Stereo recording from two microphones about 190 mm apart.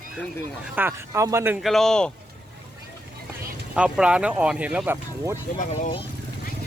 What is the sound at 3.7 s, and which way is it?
Speech, 5° right (ahead or behind).